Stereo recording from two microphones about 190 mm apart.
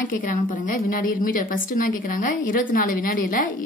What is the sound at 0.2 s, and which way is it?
A woman's voice, 45° left (ahead or behind).